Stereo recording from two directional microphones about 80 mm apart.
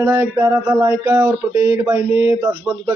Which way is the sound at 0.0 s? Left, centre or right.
Right.